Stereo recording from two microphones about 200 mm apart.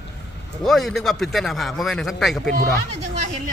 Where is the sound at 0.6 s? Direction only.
Centre (ahead or behind).